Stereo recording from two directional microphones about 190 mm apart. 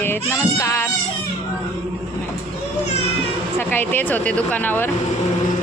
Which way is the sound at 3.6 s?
10° left (ahead or behind).